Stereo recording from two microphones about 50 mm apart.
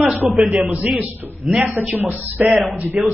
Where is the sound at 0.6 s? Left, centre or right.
Right.